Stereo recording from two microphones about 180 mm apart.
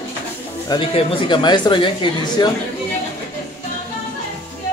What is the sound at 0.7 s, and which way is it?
Speech, 30° left (ahead or behind).